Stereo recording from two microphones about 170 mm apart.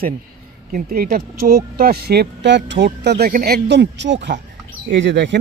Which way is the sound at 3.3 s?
60° right (ahead or behind).